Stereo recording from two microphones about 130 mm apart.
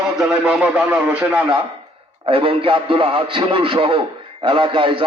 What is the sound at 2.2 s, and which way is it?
A man's voice, 45° right (ahead or behind).